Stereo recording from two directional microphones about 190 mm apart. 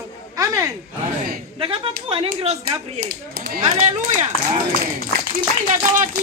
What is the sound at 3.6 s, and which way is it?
Speech, 40° right (ahead or behind).